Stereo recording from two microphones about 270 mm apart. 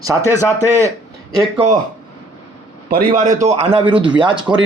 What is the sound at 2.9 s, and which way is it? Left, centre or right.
Speech, right.